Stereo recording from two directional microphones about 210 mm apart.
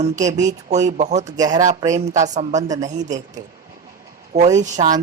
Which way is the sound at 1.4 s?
20° right (ahead or behind).